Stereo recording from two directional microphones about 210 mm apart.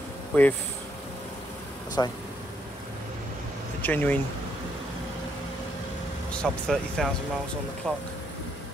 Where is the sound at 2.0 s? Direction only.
15° left (ahead or behind).